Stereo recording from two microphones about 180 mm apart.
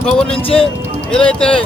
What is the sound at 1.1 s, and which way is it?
Speech, 5° left (ahead or behind).